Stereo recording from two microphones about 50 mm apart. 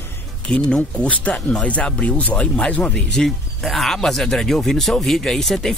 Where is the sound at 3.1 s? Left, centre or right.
Centre.